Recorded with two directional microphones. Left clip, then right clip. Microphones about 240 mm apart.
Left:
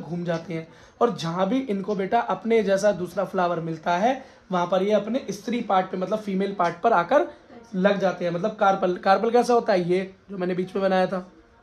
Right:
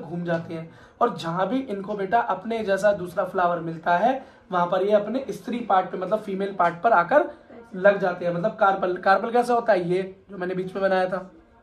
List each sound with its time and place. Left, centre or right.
0.2 s a man's voice: left